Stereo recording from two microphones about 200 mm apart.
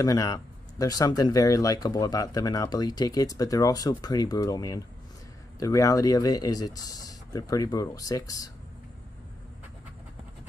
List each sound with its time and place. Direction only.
0.0 s speech: 15° left (ahead or behind)